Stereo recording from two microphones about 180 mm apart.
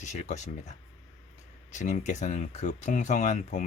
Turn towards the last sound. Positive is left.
turn(degrees=40)  # may be behind; listen again after turning